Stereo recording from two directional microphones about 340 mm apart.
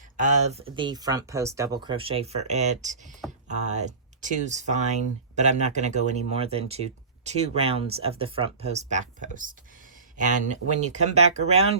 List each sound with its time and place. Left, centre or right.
0.2 s speech: right